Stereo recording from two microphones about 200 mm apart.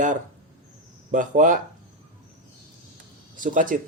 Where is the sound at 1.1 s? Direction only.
40° right (ahead or behind).